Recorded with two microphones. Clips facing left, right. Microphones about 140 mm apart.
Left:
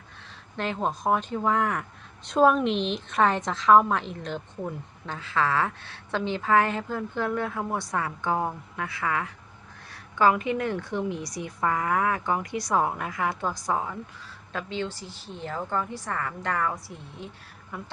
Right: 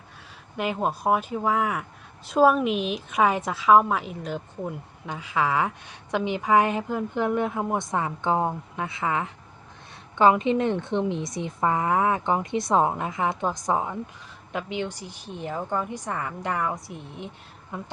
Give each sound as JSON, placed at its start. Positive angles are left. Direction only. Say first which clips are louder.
{"t": 0.5, "sound": "a woman's voice", "louder": "right 2 dB", "side_deg": -10}